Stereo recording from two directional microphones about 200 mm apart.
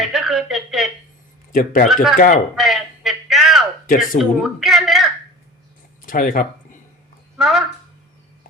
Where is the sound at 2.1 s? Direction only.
40° left (ahead or behind).